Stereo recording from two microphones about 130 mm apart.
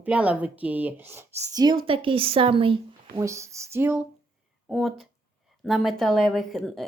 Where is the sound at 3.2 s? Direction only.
25° right (ahead or behind).